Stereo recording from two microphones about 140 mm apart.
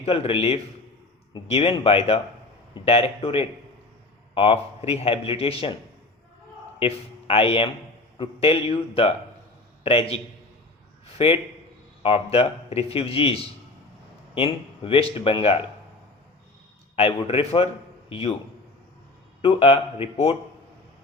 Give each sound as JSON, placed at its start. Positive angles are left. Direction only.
{"t": 0.0, "sound": "speech", "side_deg": 45}
{"t": 6.7, "sound": "speech", "side_deg": 45}
{"t": 11.0, "sound": "a sound", "side_deg": 45}
{"t": 12.0, "sound": "speech", "side_deg": 40}
{"t": 16.9, "sound": "speech", "side_deg": 45}
{"t": 19.4, "sound": "speech", "side_deg": 40}